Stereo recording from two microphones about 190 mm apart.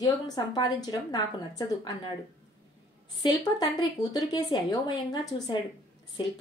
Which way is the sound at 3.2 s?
20° left (ahead or behind).